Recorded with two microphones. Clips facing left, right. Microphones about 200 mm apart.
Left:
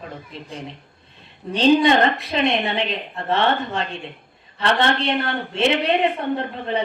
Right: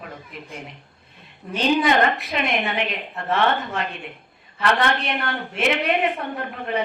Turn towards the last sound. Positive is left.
turn(degrees=30)  # may be behind; listen again after turning